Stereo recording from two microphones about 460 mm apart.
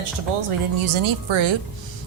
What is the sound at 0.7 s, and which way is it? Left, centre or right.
Speech, right.